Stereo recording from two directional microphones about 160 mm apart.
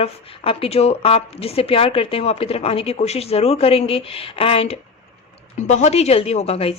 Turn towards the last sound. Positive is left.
turn(degrees=40)  # may be behind; listen again after turning